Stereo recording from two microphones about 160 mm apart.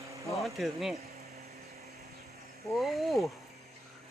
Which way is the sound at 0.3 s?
Centre (ahead or behind).